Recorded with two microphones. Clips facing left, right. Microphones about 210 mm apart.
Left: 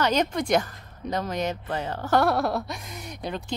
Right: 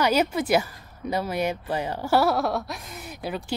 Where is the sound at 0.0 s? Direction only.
5° right (ahead or behind).